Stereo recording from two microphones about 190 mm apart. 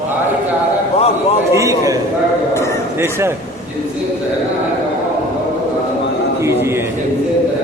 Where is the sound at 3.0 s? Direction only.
10° right (ahead or behind).